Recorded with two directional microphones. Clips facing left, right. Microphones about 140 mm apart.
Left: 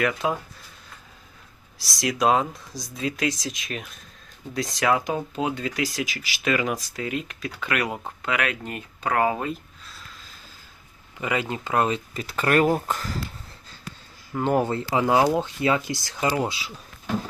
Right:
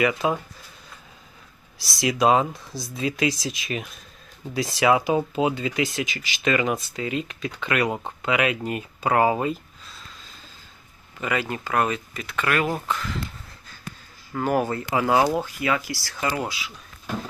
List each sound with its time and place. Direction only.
0.0 s speech: 5° right (ahead or behind)
1.8 s speech: centre (ahead or behind)
9.5 s a sound: centre (ahead or behind)
11.2 s speech: 20° left (ahead or behind); by 13.1 s 40° left (ahead or behind)
14.3 s speech: 25° left (ahead or behind)